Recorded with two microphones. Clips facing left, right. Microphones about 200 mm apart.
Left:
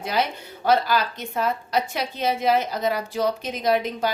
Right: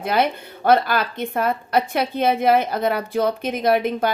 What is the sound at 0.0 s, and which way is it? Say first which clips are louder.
A woman's voice: right 5 dB; 55° right (ahead or behind).